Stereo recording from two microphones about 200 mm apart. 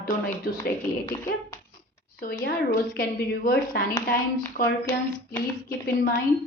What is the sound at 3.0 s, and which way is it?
A woman's voice, 50° left (ahead or behind).